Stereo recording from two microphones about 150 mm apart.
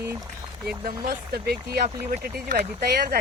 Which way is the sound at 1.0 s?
90° right.